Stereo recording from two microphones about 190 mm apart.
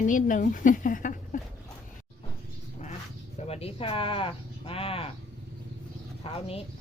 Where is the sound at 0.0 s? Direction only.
45° left (ahead or behind).